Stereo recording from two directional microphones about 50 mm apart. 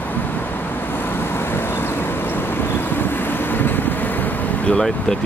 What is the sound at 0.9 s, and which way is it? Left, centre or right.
Vehicle, left.